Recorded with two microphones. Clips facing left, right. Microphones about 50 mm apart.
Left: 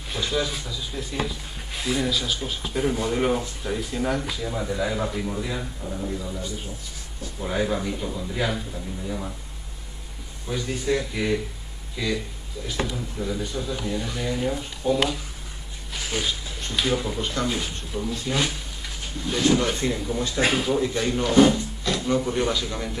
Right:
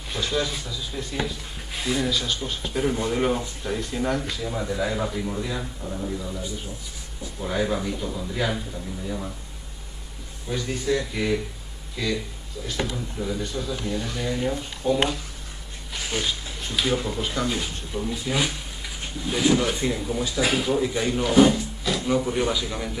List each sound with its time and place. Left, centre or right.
0.1 s speech: centre
10.5 s speech: centre